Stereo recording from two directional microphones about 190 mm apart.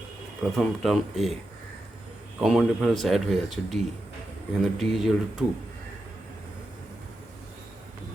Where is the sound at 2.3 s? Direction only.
5° right (ahead or behind).